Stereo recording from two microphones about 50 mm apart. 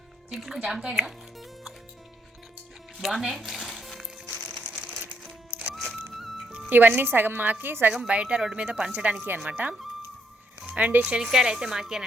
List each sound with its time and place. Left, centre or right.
0.3 s a woman's voice: centre
0.6 s speech: centre
3.0 s music: centre
5.5 s music: right
5.7 s music: centre
6.7 s a woman's voice: right
8.0 s a woman's voice: right
11.0 s speech: centre